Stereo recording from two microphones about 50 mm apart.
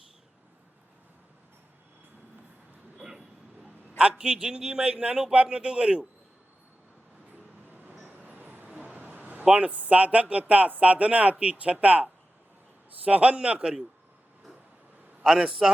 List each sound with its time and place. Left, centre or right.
3.0 s a sound: centre
4.2 s a man's voice: centre
7.7 s vehicle: right
9.0 s a man's voice: right
15.4 s a man's voice: centre